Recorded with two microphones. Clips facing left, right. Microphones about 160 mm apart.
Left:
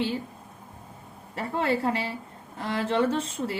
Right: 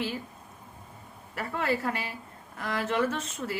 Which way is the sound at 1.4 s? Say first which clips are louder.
Left 3 dB; 30° left (ahead or behind).